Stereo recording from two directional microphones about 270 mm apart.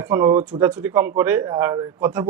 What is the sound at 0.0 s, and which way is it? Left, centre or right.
Speech, centre.